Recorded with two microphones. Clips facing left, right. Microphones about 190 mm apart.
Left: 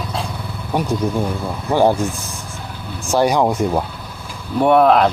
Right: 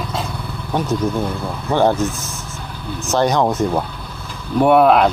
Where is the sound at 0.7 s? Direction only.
10° left (ahead or behind).